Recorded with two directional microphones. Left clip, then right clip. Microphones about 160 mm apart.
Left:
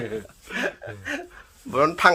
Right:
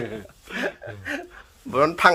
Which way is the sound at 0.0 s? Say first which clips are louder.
Left 1 dB; centre (ahead or behind).